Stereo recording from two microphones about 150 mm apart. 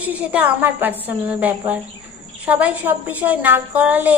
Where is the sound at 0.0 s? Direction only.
10° right (ahead or behind).